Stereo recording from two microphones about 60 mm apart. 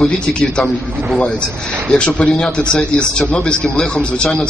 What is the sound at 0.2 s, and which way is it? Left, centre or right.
Speech, centre.